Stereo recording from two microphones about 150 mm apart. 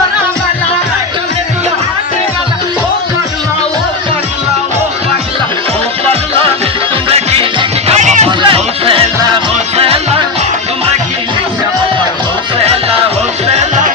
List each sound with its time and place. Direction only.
6.1 s music: 40° right (ahead or behind)
8.4 s music: 35° right (ahead or behind)